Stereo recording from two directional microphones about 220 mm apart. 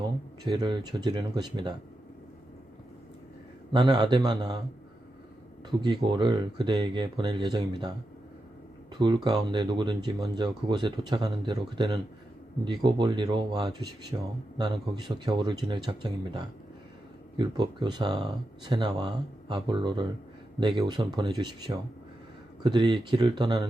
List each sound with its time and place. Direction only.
0.4 s speech: 20° right (ahead or behind)
3.7 s speech: 20° right (ahead or behind)
5.8 s speech: 20° right (ahead or behind)
9.0 s speech: 20° right (ahead or behind)
15.2 s speech: 20° right (ahead or behind)